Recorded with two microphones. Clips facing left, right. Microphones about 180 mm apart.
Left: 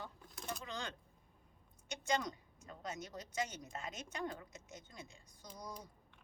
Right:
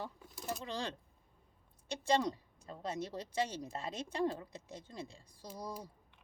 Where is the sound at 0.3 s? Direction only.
Centre (ahead or behind).